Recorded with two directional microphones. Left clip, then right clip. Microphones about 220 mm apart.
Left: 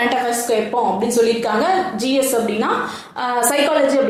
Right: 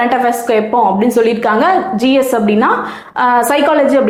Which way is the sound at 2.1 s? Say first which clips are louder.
Right 5 dB; 50° right (ahead or behind).